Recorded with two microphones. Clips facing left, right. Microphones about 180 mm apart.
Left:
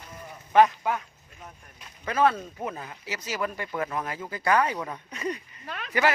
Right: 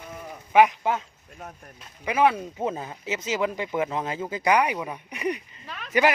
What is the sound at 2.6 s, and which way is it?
Speech, 25° right (ahead or behind).